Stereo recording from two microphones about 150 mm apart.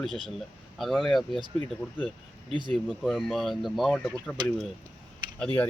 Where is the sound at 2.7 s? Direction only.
Centre (ahead or behind).